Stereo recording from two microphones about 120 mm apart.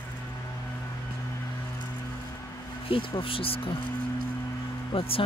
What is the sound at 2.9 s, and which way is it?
Speech, 45° left (ahead or behind).